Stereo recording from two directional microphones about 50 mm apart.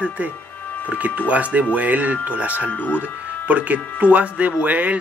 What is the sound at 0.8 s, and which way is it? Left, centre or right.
Speech, right.